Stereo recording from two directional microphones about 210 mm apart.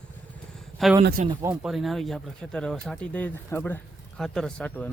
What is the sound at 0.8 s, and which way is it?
Speech, centre (ahead or behind).